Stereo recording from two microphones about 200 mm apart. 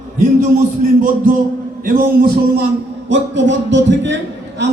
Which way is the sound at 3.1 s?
65° right (ahead or behind).